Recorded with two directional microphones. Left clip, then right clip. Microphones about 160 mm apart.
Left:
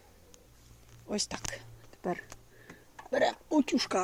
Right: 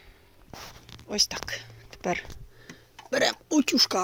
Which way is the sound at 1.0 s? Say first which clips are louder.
Right 8 dB; 5° left (ahead or behind).